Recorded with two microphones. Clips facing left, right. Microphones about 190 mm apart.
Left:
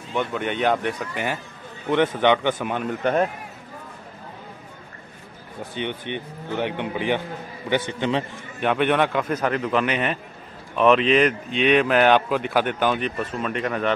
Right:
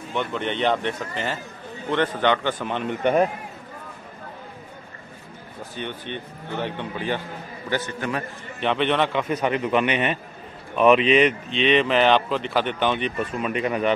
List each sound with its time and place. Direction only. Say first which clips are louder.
0.1 s speech: left 1 dB; 10° left (ahead or behind)
5.8 s a man's voice: left 3 dB; 15° left (ahead or behind)
8.5 s speech: left 2 dB; 10° left (ahead or behind)
9.2 s speech: even; 5° right (ahead or behind)